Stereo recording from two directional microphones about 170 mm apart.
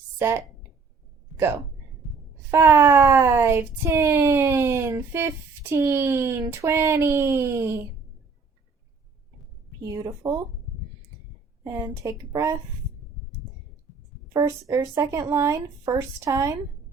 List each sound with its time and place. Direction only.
0.2 s speech: 15° right (ahead or behind)
2.5 s speech: 15° right (ahead or behind)
9.9 s speech: 20° right (ahead or behind)
11.6 s speech: 15° right (ahead or behind)
14.3 s speech: 15° right (ahead or behind)